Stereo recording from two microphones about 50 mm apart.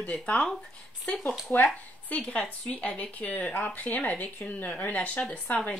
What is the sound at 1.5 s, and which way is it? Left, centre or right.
Speech, left.